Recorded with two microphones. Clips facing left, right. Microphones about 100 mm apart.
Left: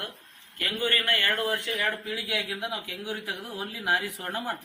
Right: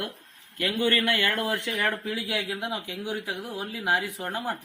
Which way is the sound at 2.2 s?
25° right (ahead or behind).